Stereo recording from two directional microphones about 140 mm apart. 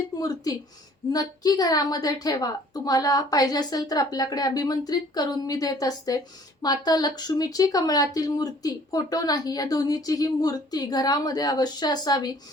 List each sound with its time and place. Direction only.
0.2 s a woman's voice: 25° left (ahead or behind)